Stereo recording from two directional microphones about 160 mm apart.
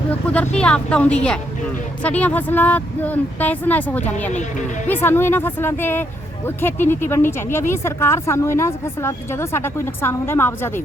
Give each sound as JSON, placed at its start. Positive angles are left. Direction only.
{"t": 0.3, "sound": "speech", "side_deg": 5}